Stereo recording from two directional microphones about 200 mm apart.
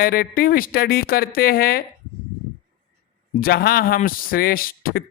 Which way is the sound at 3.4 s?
50° left (ahead or behind).